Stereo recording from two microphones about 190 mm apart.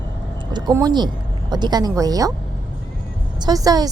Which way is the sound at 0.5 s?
20° right (ahead or behind).